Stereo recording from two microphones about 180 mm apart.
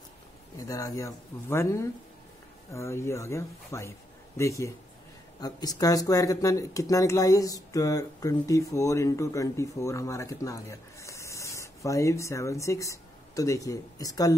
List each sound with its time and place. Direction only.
0.6 s speech: 20° left (ahead or behind)